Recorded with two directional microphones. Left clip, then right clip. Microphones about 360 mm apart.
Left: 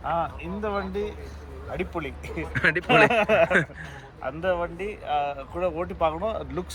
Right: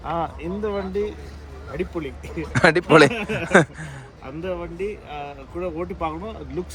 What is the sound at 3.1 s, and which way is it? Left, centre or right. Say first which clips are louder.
Speech: even; centre.